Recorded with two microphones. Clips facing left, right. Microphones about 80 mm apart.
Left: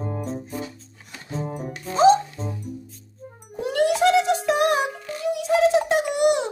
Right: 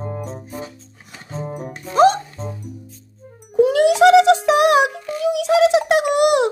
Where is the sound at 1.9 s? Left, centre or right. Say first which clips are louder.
Right 2 dB; right.